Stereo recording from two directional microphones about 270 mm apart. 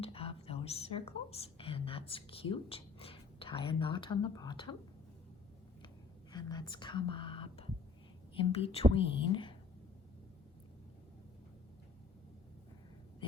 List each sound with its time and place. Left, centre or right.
0.0 s a woman's voice: left
6.3 s speech: centre